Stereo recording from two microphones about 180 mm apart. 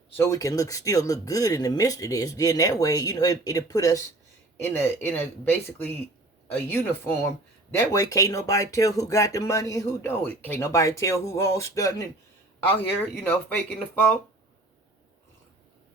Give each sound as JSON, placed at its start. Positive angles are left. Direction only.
{"t": 0.2, "sound": "speech", "side_deg": 15}
{"t": 13.3, "sound": "speech", "side_deg": 10}